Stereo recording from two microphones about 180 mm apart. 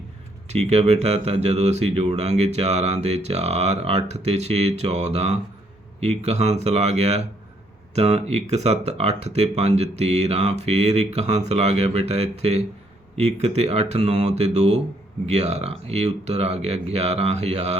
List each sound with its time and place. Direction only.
0.4 s speech: 35° right (ahead or behind)